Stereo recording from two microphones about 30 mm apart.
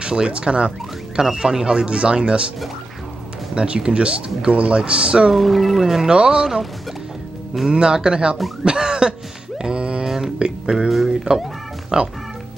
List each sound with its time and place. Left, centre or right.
0.0 s speech: right
1.3 s speech: right
3.5 s speech: right
5.3 s speech: centre
6.0 s speech: right
7.8 s speech: right
8.6 s cough: right
9.6 s a sound: right
10.0 s a sound: centre
10.4 s speech: right
11.1 s speech: centre